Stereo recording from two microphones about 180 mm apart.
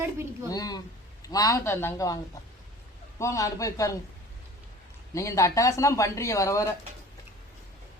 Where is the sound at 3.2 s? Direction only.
15° left (ahead or behind).